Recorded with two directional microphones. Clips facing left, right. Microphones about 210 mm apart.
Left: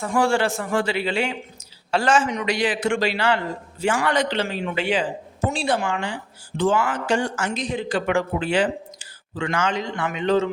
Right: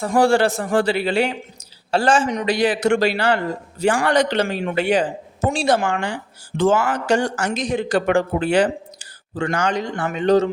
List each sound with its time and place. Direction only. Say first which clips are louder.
0.0 s a man's voice: right 5 dB; 35° right (ahead or behind)
4.4 s a man's voice: right 4 dB; 50° right (ahead or behind)
7.2 s speech: right 3 dB; 85° right
7.8 s a man's voice: right 4 dB; 45° right (ahead or behind)